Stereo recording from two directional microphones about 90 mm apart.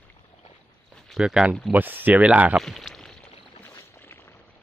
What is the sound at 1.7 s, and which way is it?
Speech, 20° right (ahead or behind).